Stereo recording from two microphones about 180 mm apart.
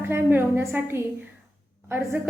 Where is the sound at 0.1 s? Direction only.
10° right (ahead or behind).